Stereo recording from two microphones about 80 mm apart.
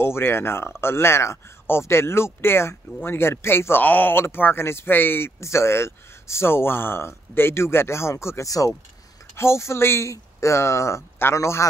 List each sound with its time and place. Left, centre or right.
0.0 s speech: left
9.3 s speech: left